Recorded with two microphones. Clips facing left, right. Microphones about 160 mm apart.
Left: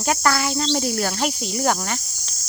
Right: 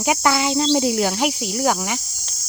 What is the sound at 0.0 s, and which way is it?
Speech, 15° right (ahead or behind).